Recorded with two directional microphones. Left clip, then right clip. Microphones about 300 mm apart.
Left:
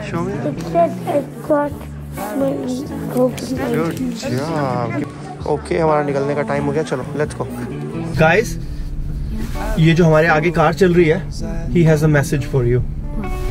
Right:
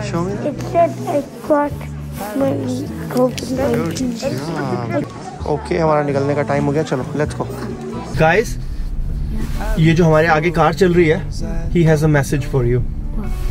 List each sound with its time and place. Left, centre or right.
0.0 s speech: centre
8.2 s speech: centre
9.6 s speech: centre